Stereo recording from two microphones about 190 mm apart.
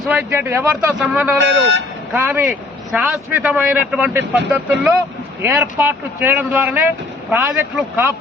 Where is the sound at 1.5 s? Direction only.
70° right (ahead or behind).